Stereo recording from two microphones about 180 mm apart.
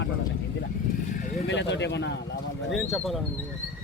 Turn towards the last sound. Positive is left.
turn(degrees=0)  # may be behind; listen again after turning